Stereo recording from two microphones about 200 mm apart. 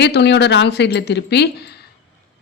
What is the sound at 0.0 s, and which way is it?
Speech, 60° left (ahead or behind).